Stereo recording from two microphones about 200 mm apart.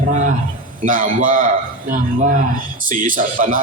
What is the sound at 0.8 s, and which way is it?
A man's voice, 40° right (ahead or behind).